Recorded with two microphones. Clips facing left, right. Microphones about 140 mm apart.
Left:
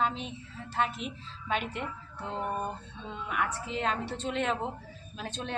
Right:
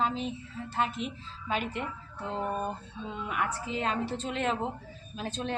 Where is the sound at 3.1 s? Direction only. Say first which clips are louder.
Even; centre (ahead or behind).